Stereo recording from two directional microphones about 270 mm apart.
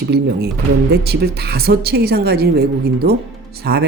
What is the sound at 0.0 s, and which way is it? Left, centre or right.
Speech, right.